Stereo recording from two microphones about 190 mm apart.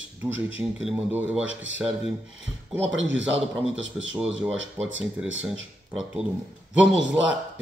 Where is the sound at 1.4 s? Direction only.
80° right.